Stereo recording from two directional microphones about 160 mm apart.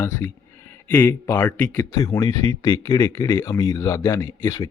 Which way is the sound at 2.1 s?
20° left (ahead or behind).